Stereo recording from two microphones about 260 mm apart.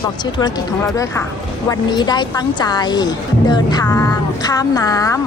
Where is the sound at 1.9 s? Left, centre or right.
Centre.